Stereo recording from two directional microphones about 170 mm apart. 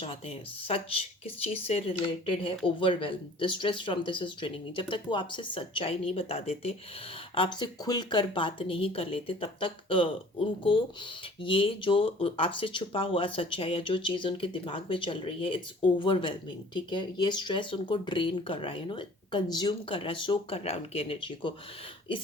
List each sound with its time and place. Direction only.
0.0 s speech: 35° left (ahead or behind)
11.4 s speech: 30° left (ahead or behind)